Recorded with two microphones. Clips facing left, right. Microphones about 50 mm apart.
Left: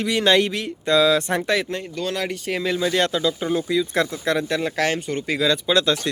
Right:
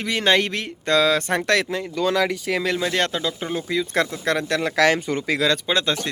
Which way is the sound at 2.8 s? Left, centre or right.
Right.